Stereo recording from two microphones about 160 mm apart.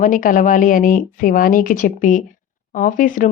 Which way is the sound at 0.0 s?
55° left (ahead or behind).